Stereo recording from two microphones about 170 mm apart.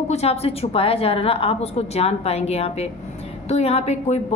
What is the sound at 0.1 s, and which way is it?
A woman's voice, 35° left (ahead or behind).